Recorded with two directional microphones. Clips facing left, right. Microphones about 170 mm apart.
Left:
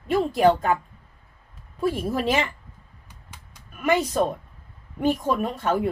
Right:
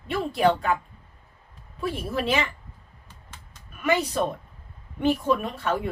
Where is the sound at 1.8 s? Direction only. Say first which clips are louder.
Left 4 dB; 40° left (ahead or behind).